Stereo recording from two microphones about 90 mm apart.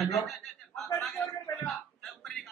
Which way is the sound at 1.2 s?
25° left (ahead or behind).